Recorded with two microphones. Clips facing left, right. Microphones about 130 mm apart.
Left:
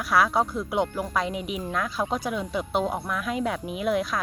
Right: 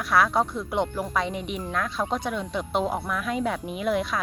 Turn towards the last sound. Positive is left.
turn(degrees=0)  # may be behind; listen again after turning